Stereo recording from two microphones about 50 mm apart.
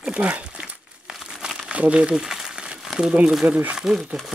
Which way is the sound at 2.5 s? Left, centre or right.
Centre.